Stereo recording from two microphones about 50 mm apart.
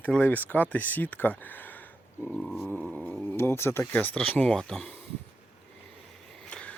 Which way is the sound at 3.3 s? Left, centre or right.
Left.